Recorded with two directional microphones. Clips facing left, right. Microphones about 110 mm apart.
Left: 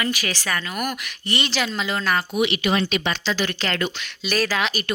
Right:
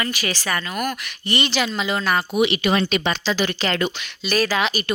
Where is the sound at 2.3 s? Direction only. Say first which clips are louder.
Right 4 dB; 20° right (ahead or behind).